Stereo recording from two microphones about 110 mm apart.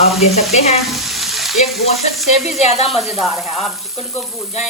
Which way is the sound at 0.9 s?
Centre (ahead or behind).